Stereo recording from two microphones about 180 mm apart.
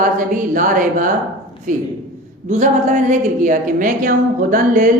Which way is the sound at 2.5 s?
40° right (ahead or behind).